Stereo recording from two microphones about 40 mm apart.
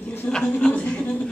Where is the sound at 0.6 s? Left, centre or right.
Left.